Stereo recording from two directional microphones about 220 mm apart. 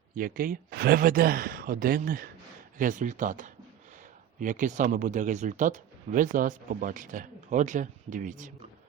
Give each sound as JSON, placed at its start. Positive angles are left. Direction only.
{"t": 0.1, "sound": "speech", "side_deg": -40}